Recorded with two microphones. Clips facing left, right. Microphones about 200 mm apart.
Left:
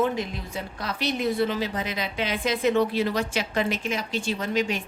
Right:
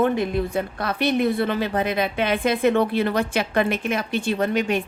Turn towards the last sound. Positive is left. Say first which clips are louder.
# right 5 dB
turn(degrees=-55)  # may be behind; listen again after turning